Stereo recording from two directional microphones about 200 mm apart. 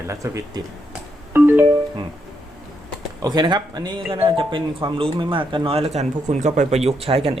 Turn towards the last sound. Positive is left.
turn(degrees=-30)  # may be behind; listen again after turning